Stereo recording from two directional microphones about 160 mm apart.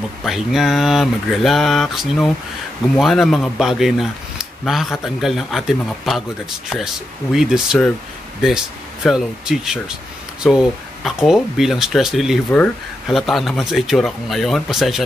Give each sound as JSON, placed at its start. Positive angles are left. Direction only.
{"t": 0.2, "sound": "speech", "side_deg": 0}
{"t": 7.3, "sound": "speech", "side_deg": -5}
{"t": 12.4, "sound": "speech", "side_deg": 10}